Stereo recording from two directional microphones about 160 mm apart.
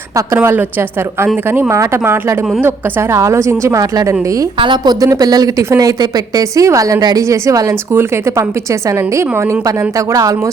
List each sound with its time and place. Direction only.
0.3 s a woman's voice: 15° right (ahead or behind)
9.6 s a woman's voice: 20° right (ahead or behind)